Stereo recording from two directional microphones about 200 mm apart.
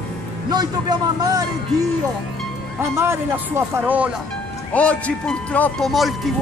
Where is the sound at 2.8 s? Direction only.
15° right (ahead or behind).